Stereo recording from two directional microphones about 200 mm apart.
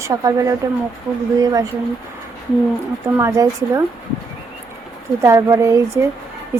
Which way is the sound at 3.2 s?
15° right (ahead or behind).